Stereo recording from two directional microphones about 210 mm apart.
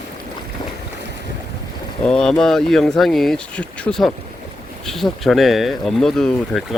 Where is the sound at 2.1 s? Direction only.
5° left (ahead or behind).